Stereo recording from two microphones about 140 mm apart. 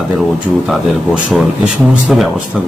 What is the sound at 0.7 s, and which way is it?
A man's voice, 5° right (ahead or behind).